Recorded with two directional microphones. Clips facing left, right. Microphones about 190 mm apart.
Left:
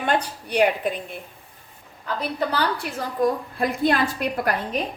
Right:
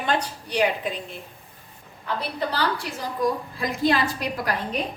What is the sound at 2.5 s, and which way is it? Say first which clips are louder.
A woman's voice: left 2 dB; 55° left (ahead or behind).